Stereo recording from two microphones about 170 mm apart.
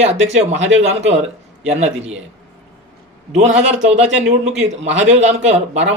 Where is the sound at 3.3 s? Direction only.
45° right (ahead or behind).